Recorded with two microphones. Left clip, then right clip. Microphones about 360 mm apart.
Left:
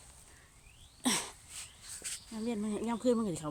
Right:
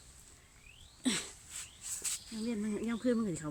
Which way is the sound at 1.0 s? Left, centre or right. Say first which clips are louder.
Left 2 dB; centre.